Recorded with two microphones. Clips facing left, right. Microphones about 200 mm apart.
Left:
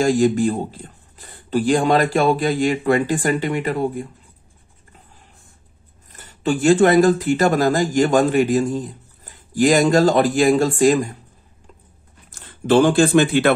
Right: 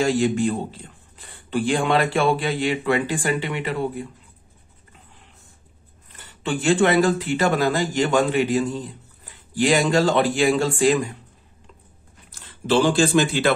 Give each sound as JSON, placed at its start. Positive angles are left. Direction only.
{"t": 0.0, "sound": "speech", "side_deg": 45}
{"t": 6.1, "sound": "speech", "side_deg": 40}
{"t": 12.3, "sound": "speech", "side_deg": 50}